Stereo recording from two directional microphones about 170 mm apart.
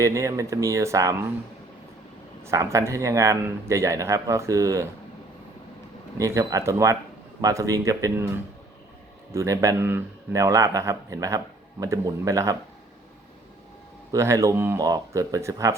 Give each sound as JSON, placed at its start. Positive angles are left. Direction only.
{"t": 0.0, "sound": "speech", "side_deg": -15}
{"t": 2.4, "sound": "speech", "side_deg": -15}
{"t": 6.1, "sound": "a man's voice", "side_deg": -20}
{"t": 9.3, "sound": "a man's voice", "side_deg": -20}
{"t": 14.1, "sound": "speech", "side_deg": -15}